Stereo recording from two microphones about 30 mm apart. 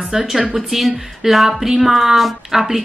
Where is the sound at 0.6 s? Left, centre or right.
Centre.